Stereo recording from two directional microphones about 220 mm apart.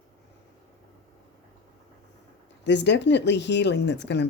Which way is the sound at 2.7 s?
50° left (ahead or behind).